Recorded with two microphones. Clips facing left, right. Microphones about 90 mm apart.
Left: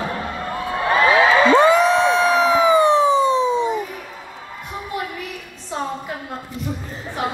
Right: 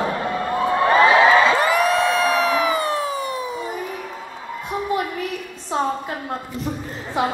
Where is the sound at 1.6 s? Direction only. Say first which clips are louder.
Left 4 dB; 25° left (ahead or behind).